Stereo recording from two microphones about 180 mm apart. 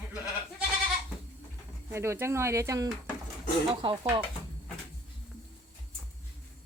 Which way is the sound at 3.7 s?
30° right (ahead or behind).